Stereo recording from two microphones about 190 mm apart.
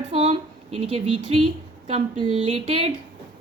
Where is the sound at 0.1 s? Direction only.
30° right (ahead or behind).